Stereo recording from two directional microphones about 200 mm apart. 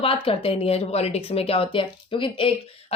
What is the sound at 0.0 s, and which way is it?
A woman's voice, 30° left (ahead or behind).